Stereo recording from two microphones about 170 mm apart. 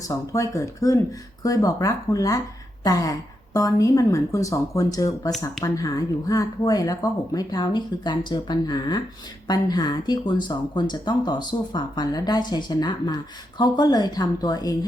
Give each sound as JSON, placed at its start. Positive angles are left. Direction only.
{"t": 0.0, "sound": "speech", "side_deg": 20}